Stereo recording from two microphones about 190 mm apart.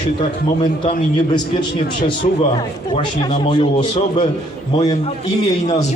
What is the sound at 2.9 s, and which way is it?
A man's voice, 25° left (ahead or behind).